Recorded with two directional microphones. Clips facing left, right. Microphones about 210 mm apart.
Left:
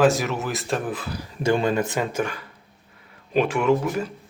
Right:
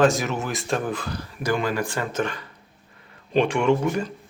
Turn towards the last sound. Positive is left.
turn(degrees=5)  # may be behind; listen again after turning